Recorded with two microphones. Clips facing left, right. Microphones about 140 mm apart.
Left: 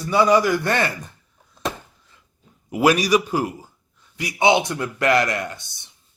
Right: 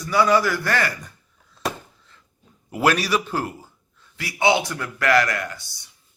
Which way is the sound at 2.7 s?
15° left (ahead or behind).